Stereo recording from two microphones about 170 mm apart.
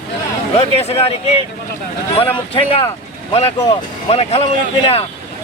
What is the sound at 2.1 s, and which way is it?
Speech, 35° left (ahead or behind).